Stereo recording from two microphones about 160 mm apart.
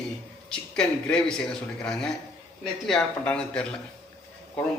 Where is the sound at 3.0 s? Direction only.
5° left (ahead or behind).